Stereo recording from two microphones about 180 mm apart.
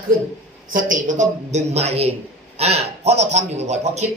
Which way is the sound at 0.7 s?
45° right (ahead or behind).